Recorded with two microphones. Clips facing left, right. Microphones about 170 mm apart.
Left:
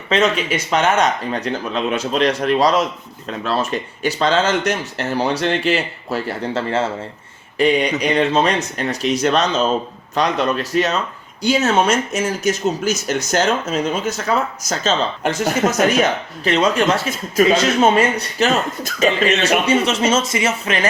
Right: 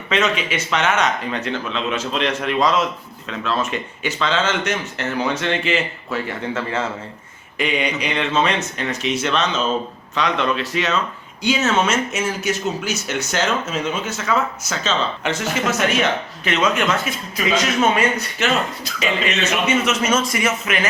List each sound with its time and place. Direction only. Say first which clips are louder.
0.1 s speech: left 3 dB; 35° left (ahead or behind)